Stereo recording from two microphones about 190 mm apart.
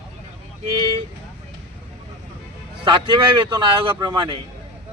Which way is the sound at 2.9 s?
25° right (ahead or behind).